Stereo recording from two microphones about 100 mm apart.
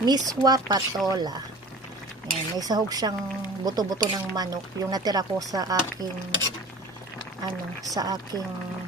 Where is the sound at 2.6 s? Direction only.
40° right (ahead or behind).